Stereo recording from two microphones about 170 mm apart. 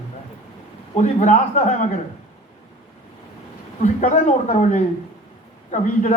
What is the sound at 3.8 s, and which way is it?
A man's voice, 45° left (ahead or behind).